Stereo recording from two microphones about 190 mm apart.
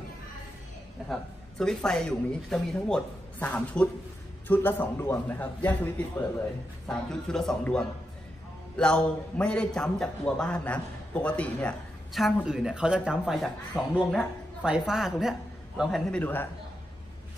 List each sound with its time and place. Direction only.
1.0 s a man's voice: 5° left (ahead or behind)